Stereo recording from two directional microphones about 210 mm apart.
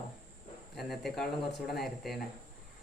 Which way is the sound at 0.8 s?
Centre (ahead or behind).